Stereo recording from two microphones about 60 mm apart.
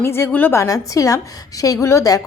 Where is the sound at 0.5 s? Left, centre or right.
Left.